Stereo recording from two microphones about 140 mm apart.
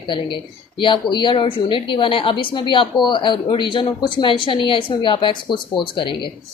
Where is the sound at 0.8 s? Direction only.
35° left (ahead or behind).